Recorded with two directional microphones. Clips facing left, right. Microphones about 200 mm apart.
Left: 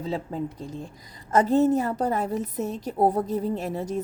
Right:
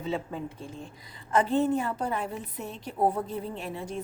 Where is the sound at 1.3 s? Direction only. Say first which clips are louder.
Left 5 dB; 40° left (ahead or behind).